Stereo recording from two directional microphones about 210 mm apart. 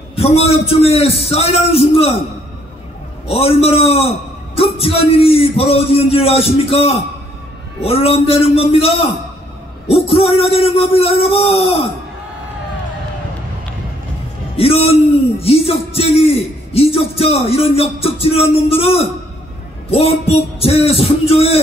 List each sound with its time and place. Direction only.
0.1 s music: 30° left (ahead or behind)
3.3 s music: 25° left (ahead or behind)
14.6 s music: 30° left (ahead or behind)